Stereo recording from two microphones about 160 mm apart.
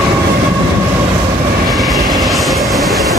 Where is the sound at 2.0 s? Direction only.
25° right (ahead or behind).